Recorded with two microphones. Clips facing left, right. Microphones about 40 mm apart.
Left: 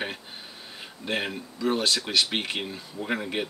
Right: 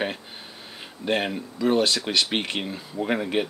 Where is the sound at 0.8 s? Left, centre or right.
Centre.